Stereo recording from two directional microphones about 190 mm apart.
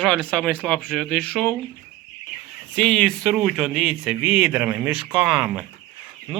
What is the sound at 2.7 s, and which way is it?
Speech, 5° left (ahead or behind).